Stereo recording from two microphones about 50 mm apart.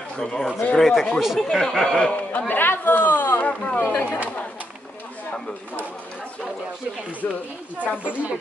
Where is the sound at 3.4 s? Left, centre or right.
Left.